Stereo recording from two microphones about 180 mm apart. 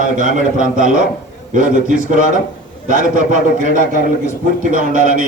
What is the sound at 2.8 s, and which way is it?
Speech, 45° right (ahead or behind).